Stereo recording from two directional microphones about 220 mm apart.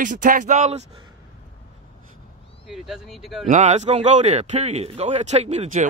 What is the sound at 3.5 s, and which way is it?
Speech, 30° right (ahead or behind).